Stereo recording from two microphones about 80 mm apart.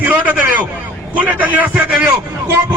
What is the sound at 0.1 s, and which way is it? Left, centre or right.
A man's voice, right.